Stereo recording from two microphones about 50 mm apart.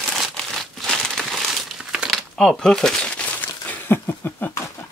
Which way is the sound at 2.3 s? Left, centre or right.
Centre.